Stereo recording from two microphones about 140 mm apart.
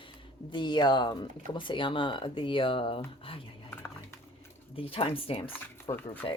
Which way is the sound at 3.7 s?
20° left (ahead or behind).